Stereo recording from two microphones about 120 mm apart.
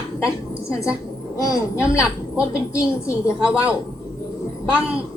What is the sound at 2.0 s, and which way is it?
Speech, 10° right (ahead or behind).